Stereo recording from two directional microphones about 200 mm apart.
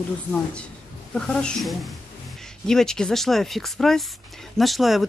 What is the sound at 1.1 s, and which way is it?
Speech, 5° left (ahead or behind).